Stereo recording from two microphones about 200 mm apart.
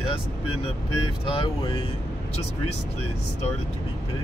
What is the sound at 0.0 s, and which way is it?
Speech, 25° left (ahead or behind).